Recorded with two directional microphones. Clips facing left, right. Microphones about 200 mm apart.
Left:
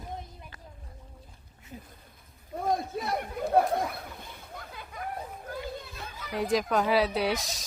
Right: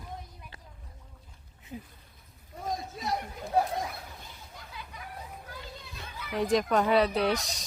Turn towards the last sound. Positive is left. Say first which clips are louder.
# right 1 dB
turn(degrees=0)  # may be behind; listen again after turning